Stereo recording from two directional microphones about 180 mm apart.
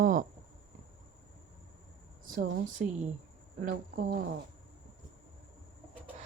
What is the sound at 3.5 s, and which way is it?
Speech, 50° right (ahead or behind).